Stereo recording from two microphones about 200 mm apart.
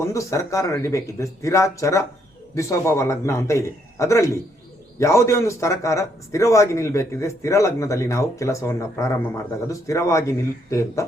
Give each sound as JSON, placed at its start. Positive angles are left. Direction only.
{"t": 0.0, "sound": "a man's voice", "side_deg": 15}